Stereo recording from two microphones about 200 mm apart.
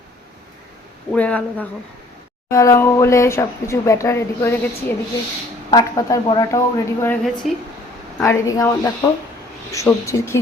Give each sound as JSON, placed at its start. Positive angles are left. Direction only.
{"t": 1.1, "sound": "speech", "side_deg": 5}
{"t": 2.5, "sound": "speech", "side_deg": 15}
{"t": 7.4, "sound": "speech", "side_deg": 0}
{"t": 8.2, "sound": "speech", "side_deg": 15}